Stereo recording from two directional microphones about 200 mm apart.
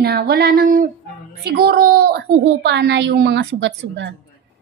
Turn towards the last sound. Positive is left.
turn(degrees=-60)  # may be behind; listen again after turning